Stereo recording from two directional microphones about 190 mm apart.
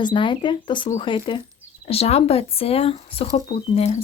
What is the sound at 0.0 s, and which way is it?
Speech, 25° left (ahead or behind).